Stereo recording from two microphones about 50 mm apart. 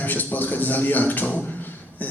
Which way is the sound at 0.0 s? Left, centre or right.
Left.